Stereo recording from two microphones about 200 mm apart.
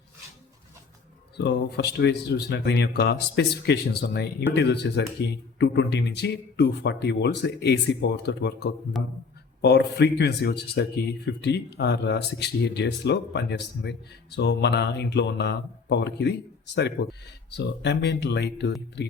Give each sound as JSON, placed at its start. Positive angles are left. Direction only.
{"t": 1.4, "sound": "speech", "side_deg": 55}